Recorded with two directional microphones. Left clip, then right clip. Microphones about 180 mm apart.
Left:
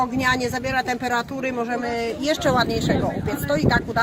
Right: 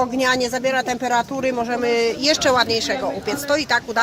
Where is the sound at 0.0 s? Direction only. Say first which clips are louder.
Right 2 dB; 45° right (ahead or behind).